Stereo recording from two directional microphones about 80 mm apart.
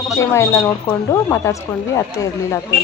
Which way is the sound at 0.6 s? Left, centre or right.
Left.